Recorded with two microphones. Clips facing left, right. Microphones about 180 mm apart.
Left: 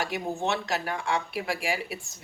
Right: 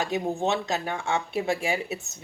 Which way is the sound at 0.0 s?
20° right (ahead or behind).